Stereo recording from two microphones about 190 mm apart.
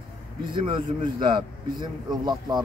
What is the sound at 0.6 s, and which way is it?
A man's voice, 25° right (ahead or behind).